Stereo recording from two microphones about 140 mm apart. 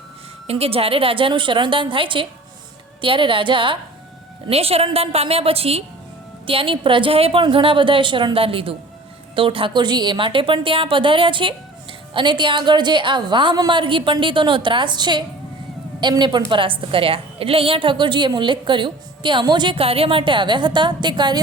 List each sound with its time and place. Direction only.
0.4 s a woman's voice: 45° right (ahead or behind)